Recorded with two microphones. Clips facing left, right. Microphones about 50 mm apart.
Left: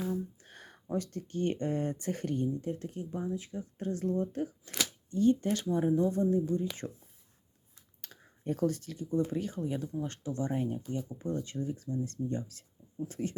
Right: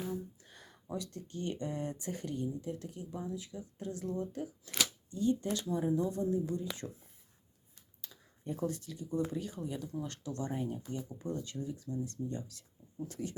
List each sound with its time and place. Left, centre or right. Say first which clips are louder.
0.1 s speech: left 5 dB; left
8.4 s speech: left 6 dB; left